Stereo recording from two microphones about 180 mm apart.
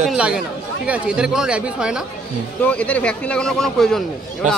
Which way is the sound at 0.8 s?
5° right (ahead or behind).